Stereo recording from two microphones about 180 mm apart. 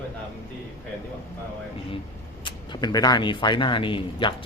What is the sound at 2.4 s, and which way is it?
Speech, 20° left (ahead or behind).